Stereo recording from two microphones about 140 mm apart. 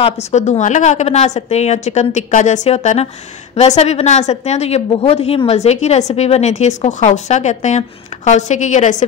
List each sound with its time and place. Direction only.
0.0 s a woman's voice: 55° left (ahead or behind)